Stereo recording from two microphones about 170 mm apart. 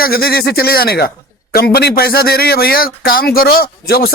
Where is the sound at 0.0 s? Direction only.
60° left (ahead or behind).